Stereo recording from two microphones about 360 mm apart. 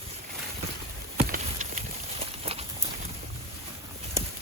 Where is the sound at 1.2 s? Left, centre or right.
Right.